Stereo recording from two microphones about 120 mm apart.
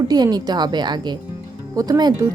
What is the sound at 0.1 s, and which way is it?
A woman's voice, 35° right (ahead or behind).